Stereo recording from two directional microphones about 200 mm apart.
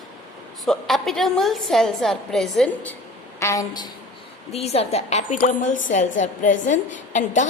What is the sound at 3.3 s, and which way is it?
Speech, 15° left (ahead or behind).